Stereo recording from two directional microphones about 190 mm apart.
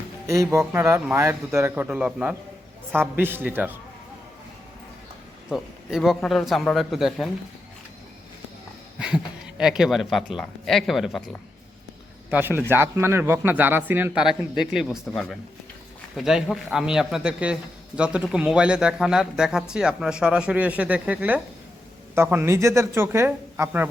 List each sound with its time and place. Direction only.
0.3 s a man's voice: 15° right (ahead or behind)
5.5 s a man's voice: centre (ahead or behind)
9.0 s a man's voice: 5° right (ahead or behind)
12.3 s a man's voice: 10° right (ahead or behind)